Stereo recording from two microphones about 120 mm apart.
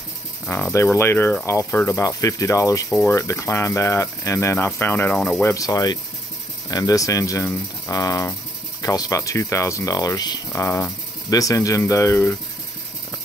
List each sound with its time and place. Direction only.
0.5 s speech: 20° left (ahead or behind); by 10.4 s 35° left (ahead or behind)
10.5 s speech: 25° left (ahead or behind)